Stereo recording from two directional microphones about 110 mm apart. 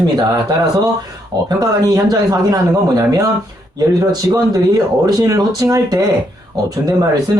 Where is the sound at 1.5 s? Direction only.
35° right (ahead or behind).